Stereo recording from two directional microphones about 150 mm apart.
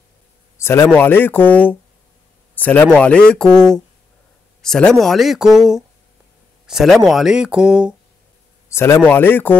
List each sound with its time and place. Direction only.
0.6 s speech: 15° left (ahead or behind)
4.6 s speech: 5° left (ahead or behind)
8.6 s speech: 20° left (ahead or behind)